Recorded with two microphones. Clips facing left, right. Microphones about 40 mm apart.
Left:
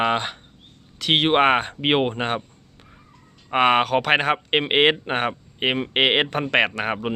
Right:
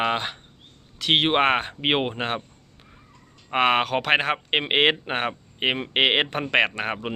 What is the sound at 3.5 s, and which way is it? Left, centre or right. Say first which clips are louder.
Speech: left 3 dB; centre.